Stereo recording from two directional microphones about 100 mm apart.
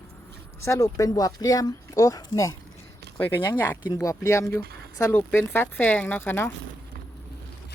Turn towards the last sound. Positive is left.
turn(degrees=20)  # may be behind; listen again after turning